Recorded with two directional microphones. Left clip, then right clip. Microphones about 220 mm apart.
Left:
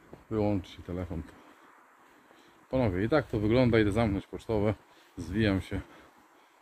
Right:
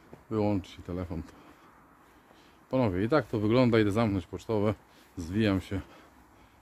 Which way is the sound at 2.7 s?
20° right (ahead or behind).